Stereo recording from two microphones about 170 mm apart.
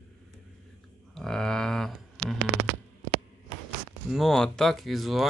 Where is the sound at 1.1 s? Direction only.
5° left (ahead or behind).